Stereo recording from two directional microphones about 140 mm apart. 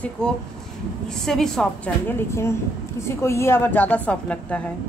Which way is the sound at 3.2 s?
20° left (ahead or behind).